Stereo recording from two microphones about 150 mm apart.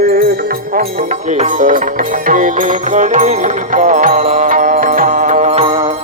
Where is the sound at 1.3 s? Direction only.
55° right (ahead or behind).